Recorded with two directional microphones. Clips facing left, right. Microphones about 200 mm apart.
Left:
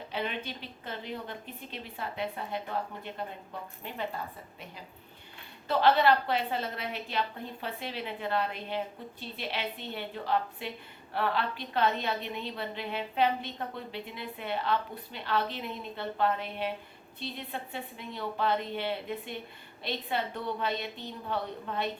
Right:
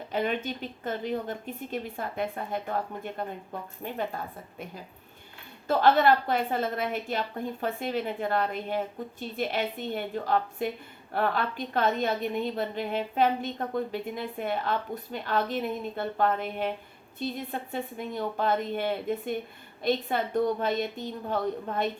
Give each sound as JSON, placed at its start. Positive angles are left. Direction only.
{"t": 0.1, "sound": "a woman's voice", "side_deg": -45}
{"t": 5.6, "sound": "a woman's voice", "side_deg": -50}